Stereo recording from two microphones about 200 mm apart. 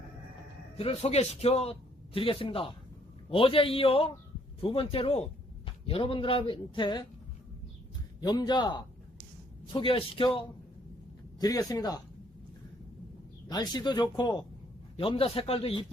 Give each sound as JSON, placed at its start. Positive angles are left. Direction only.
{"t": 0.8, "sound": "a man's voice", "side_deg": 30}
{"t": 8.2, "sound": "a man's voice", "side_deg": 20}
{"t": 13.5, "sound": "a man's voice", "side_deg": 20}